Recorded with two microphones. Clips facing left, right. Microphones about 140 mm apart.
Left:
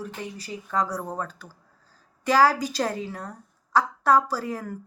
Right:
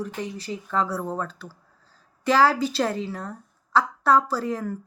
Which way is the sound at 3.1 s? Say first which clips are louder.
Right 3 dB; 35° left (ahead or behind).